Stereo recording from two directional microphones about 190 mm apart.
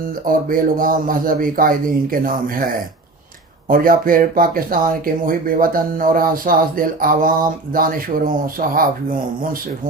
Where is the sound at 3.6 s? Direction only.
45° right (ahead or behind).